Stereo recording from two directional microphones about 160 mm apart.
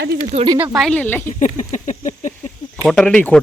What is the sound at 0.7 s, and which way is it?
Speech, 5° left (ahead or behind).